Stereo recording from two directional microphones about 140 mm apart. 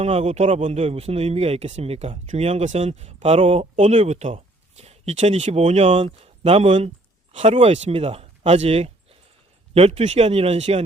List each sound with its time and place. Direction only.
0.0 s speech: 50° right (ahead or behind)